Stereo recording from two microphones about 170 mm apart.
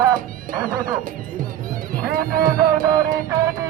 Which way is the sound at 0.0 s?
20° right (ahead or behind).